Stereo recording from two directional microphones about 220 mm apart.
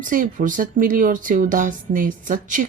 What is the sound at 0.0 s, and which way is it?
Speech, 35° right (ahead or behind).